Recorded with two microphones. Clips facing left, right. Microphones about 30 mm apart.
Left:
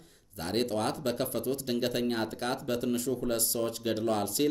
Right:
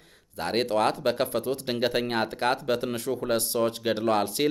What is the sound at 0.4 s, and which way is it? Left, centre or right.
Speech, right.